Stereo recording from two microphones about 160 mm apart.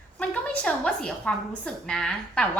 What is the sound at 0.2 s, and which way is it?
A woman's voice, 10° left (ahead or behind).